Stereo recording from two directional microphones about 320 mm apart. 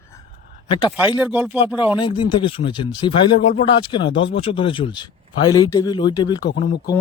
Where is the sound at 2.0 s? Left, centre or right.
Centre.